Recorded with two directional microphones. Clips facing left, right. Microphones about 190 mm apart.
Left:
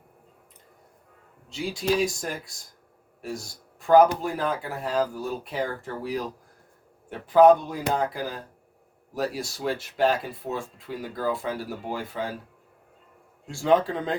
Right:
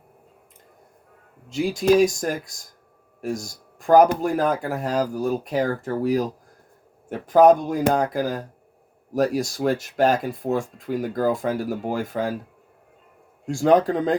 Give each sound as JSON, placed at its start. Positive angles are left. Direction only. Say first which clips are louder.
{"t": 1.5, "sound": "speech", "louder": "right 8 dB", "side_deg": -45}
{"t": 13.5, "sound": "speech", "louder": "right 4 dB", "side_deg": -45}